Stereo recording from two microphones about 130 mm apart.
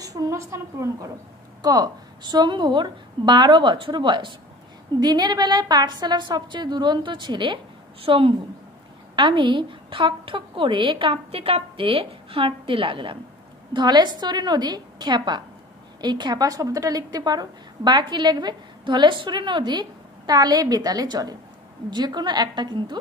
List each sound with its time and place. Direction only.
0.0 s a woman's voice: 25° right (ahead or behind)